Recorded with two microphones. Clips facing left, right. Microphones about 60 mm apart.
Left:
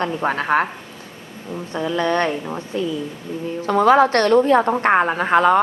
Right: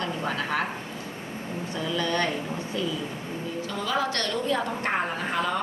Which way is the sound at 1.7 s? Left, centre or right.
Left.